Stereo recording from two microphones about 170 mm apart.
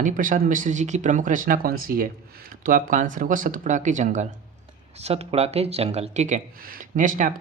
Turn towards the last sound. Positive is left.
turn(degrees=-50)  # may be behind; listen again after turning